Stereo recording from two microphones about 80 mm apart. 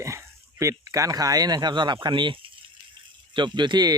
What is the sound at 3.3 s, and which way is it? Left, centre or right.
Speech, right.